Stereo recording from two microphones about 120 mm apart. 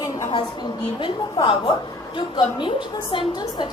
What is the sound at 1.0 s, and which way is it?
Speech, 45° left (ahead or behind).